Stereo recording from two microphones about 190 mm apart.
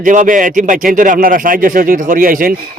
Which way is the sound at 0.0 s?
45° right (ahead or behind).